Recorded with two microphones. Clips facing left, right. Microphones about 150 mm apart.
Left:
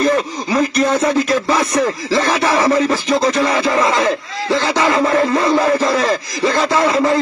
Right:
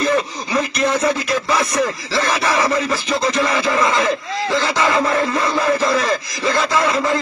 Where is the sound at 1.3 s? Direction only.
35° left (ahead or behind).